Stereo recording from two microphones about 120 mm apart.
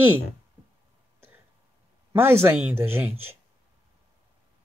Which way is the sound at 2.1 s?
20° right (ahead or behind).